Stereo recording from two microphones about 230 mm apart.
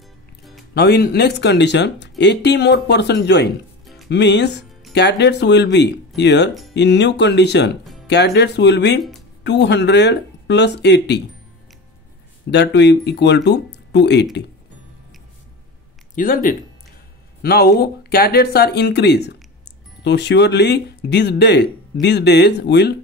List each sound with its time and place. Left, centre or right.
0.7 s speech: left
3.8 s music: centre
4.1 s speech: left
12.4 s speech: left
16.2 s speech: left